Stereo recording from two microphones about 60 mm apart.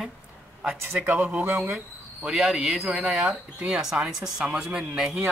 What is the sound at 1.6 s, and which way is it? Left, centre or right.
Speech, centre.